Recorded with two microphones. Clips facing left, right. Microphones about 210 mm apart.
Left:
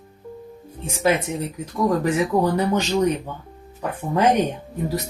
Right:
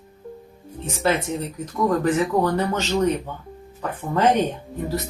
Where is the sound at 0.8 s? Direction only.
10° left (ahead or behind).